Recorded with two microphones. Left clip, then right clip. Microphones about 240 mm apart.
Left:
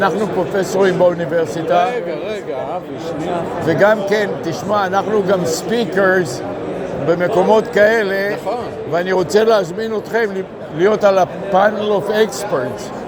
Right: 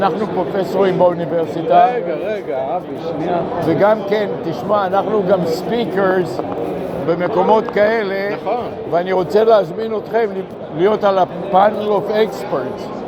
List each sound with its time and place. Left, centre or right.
0.5 s a man's voice: left
3.7 s a man's voice: left